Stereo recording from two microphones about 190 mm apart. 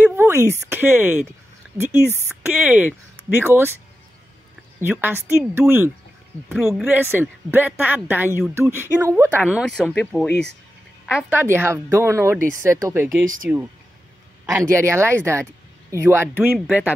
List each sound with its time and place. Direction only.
0.0 s a sound: 10° right (ahead or behind)
0.6 s speech: 10° right (ahead or behind)
4.7 s speech: 10° right (ahead or behind)
11.1 s speech: 5° right (ahead or behind)